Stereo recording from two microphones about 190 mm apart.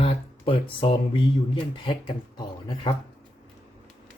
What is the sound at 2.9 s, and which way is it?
Speech, 25° left (ahead or behind).